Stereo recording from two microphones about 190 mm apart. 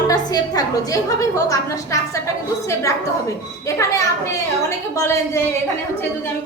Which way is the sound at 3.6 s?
15° left (ahead or behind).